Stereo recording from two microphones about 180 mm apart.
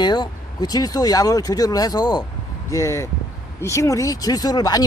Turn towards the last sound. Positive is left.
turn(degrees=20)  # may be behind; listen again after turning